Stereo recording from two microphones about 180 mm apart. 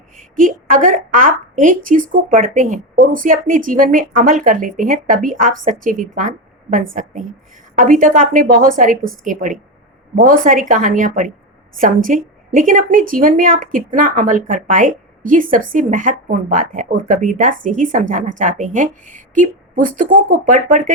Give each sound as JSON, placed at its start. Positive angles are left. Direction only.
{"t": 0.2, "sound": "a woman's voice", "side_deg": -50}